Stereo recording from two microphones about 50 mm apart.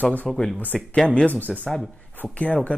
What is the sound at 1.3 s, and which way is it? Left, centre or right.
Speech, right.